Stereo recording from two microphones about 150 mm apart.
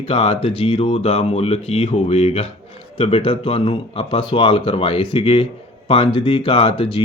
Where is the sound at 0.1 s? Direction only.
40° left (ahead or behind).